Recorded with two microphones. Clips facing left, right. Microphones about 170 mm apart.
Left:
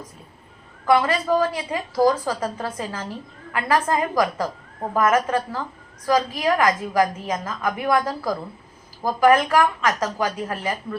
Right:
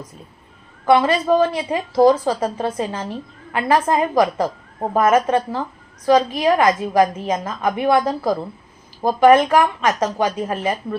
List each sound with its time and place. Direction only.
0.9 s a woman's voice: 25° right (ahead or behind)